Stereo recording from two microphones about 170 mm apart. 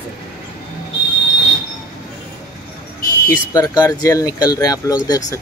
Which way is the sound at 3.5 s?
20° left (ahead or behind).